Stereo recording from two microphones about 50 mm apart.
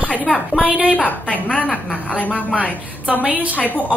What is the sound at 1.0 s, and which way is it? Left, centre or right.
A woman's voice, left.